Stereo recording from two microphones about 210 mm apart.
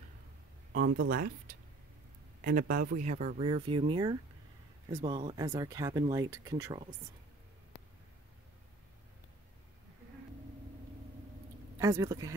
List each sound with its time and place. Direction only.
0.7 s speech: 45° right (ahead or behind)
3.4 s speech: 25° right (ahead or behind)
11.8 s speech: 15° right (ahead or behind)